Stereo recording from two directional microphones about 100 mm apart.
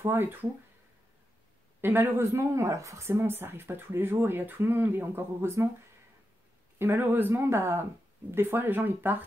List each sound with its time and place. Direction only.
0.0 s speech: 25° right (ahead or behind)
1.8 s speech: 20° right (ahead or behind)
6.8 s speech: 25° right (ahead or behind)